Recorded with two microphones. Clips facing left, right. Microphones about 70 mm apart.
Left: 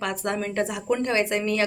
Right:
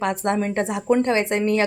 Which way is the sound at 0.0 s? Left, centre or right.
Right.